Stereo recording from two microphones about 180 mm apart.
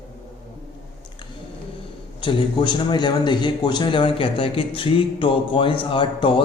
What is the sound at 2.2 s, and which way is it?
Mantra, 25° left (ahead or behind).